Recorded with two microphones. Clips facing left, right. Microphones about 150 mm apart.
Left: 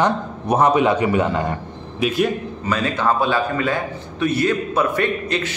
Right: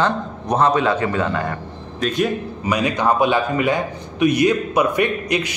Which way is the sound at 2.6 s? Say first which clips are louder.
Right 1 dB; 15° right (ahead or behind).